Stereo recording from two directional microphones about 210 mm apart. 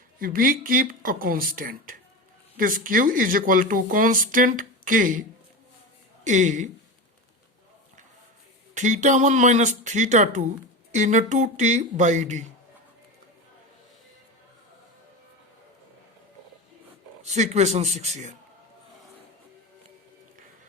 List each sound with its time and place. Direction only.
0.2 s a woman's voice: 45° right (ahead or behind)
6.2 s a woman's voice: 35° right (ahead or behind)
8.7 s a woman's voice: 35° right (ahead or behind)
17.2 s a woman's voice: 35° right (ahead or behind)